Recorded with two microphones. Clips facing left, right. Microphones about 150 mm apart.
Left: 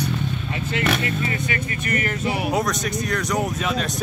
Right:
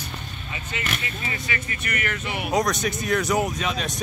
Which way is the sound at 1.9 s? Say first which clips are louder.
Left 5 dB; 35° left (ahead or behind).